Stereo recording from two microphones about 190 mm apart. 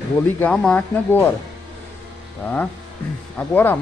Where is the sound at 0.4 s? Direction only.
5° left (ahead or behind).